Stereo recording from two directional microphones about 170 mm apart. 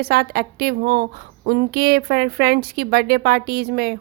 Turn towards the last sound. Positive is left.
turn(degrees=-70)  # may be behind; listen again after turning